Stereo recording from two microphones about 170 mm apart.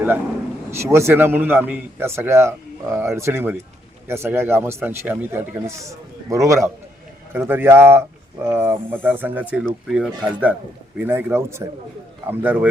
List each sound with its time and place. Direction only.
0.8 s a man's voice: 15° right (ahead or behind)